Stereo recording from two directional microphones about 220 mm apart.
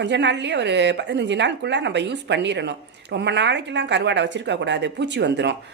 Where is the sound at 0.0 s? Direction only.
55° right (ahead or behind).